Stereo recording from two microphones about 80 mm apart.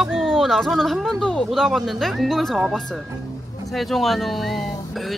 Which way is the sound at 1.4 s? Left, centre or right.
Centre.